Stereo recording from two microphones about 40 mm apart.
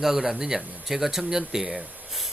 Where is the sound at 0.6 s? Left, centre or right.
Right.